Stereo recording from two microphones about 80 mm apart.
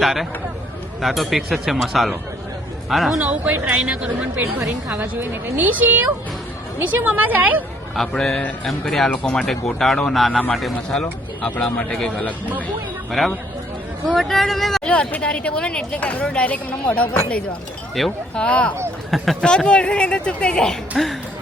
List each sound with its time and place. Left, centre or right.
0.0 s speech: centre
3.2 s a woman's voice: centre
7.9 s speech: centre
9.0 s speech: centre
9.4 s speech: centre
11.9 s speech: centre
13.1 s speech: centre
14.8 s speech: centre
18.0 s speech: centre
18.3 s speech: centre
19.1 s speech: centre